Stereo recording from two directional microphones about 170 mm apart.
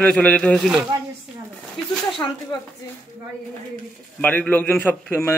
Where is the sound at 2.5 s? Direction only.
25° left (ahead or behind).